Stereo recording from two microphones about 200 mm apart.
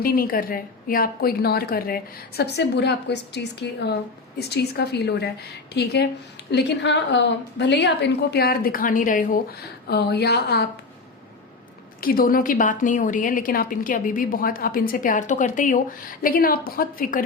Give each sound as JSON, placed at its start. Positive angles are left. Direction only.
{"t": 0.0, "sound": "a woman's voice", "side_deg": 50}
{"t": 11.9, "sound": "a woman's voice", "side_deg": 45}